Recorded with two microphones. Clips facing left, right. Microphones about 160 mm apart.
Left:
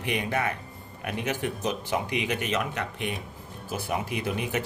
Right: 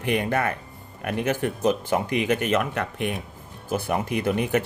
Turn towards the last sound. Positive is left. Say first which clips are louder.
# right 7 dB
turn(degrees=-50)  # may be behind; listen again after turning